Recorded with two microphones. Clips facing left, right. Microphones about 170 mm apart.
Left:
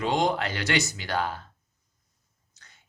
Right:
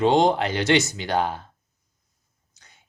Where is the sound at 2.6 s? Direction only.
15° right (ahead or behind).